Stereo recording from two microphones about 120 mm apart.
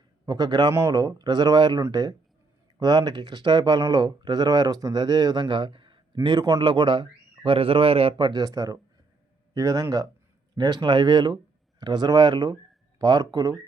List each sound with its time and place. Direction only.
0.3 s speech: 35° right (ahead or behind); by 8.3 s 50° right (ahead or behind)
8.3 s speech: 30° right (ahead or behind)